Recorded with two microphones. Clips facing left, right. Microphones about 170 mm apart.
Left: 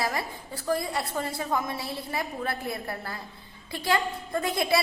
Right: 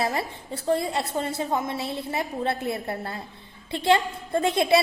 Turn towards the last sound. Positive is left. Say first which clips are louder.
# right 5 dB
turn(degrees=-25)  # may be behind; listen again after turning